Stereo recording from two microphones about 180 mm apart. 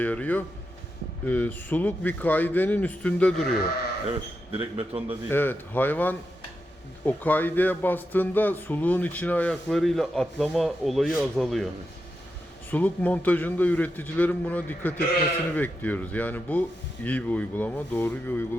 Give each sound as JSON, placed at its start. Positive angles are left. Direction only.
{"t": 0.0, "sound": "speech", "side_deg": 10}
{"t": 4.5, "sound": "a man's voice", "side_deg": -30}
{"t": 5.3, "sound": "speech", "side_deg": 10}
{"t": 12.7, "sound": "speech", "side_deg": 10}